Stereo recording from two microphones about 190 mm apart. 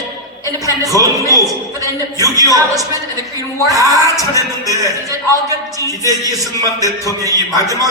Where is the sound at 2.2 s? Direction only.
20° right (ahead or behind).